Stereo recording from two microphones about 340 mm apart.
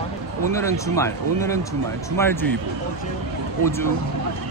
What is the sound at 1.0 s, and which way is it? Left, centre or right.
A woman's voice, centre.